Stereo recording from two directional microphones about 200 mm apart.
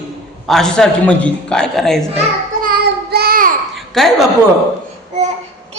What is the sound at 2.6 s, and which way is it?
Child singing, 50° right (ahead or behind).